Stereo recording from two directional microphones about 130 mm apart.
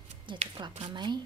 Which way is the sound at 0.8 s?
35° right (ahead or behind).